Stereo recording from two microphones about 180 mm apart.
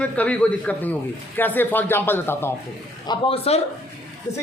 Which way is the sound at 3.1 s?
35° left (ahead or behind).